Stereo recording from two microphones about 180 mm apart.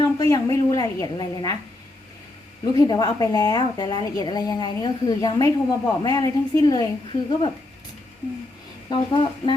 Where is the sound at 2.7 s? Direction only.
20° left (ahead or behind).